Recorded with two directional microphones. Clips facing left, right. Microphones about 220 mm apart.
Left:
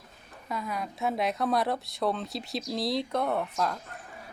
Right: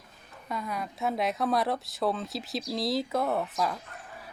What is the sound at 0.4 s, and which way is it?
Speech, centre (ahead or behind).